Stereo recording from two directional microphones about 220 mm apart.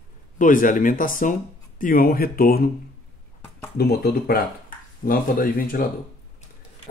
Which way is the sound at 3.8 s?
45° left (ahead or behind).